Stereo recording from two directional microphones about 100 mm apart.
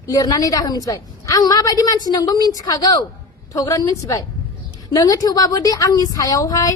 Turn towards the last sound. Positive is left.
turn(degrees=35)  # may be behind; listen again after turning